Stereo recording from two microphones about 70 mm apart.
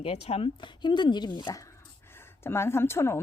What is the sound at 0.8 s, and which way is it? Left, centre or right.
Speech, left.